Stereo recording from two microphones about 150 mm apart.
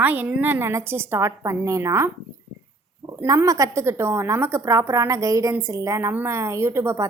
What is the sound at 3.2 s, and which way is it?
A woman's voice, 20° right (ahead or behind).